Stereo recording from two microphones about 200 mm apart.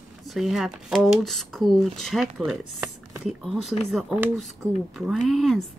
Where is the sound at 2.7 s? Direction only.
Centre (ahead or behind).